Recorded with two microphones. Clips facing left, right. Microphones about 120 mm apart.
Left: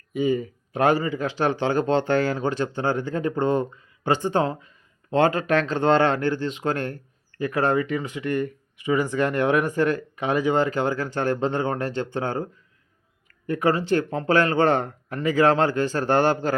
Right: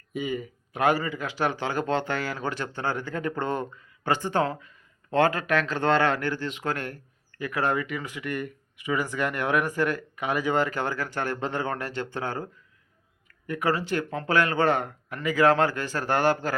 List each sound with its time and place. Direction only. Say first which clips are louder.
0.2 s speech: left 8 dB; 30° left (ahead or behind)
13.5 s speech: left 5 dB; 25° left (ahead or behind)